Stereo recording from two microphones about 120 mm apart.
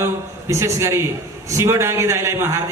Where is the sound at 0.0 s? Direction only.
25° right (ahead or behind).